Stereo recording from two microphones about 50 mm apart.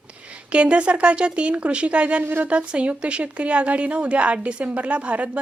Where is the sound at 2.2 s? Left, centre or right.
Right.